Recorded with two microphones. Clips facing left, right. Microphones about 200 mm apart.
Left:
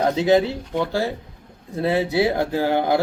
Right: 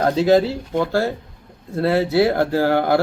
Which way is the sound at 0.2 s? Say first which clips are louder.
Right 3 dB; 15° left (ahead or behind).